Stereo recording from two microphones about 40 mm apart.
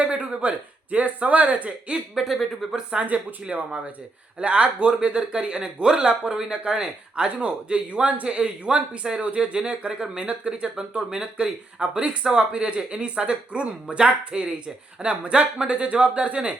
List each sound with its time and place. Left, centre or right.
0.1 s speech: right
2.1 s speech: centre
2.7 s speech: right